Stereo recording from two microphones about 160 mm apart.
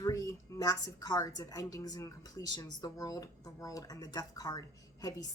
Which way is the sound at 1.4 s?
20° left (ahead or behind).